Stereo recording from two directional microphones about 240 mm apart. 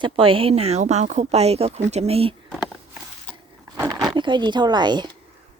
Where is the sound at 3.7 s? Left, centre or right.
Centre.